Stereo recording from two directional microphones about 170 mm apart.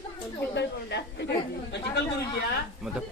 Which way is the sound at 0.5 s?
90° left.